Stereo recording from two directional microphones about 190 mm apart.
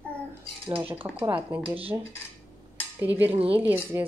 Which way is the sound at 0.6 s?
30° right (ahead or behind).